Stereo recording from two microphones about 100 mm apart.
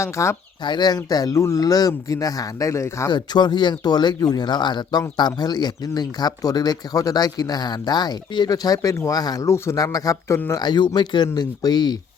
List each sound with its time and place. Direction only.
0.0 s speech: 30° left (ahead or behind)
0.6 s speech: 45° left (ahead or behind); by 3.1 s 30° left (ahead or behind)
3.1 s speech: 45° left (ahead or behind); by 10.6 s 25° left (ahead or behind)
10.6 s speech: 45° left (ahead or behind)